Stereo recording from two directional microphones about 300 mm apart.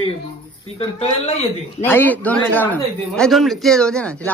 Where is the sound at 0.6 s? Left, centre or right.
Centre.